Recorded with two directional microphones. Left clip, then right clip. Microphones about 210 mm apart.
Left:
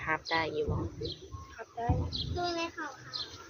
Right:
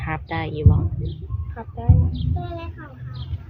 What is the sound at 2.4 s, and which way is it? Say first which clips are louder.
Speech: even; 50° left (ahead or behind).